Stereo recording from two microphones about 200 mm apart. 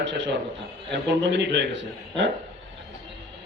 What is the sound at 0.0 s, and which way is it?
A man's voice, 65° right (ahead or behind).